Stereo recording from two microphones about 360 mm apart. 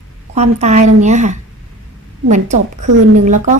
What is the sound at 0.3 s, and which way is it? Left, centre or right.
A woman's voice, centre.